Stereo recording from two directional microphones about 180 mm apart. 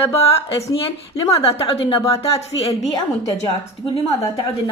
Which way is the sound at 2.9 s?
20° left (ahead or behind).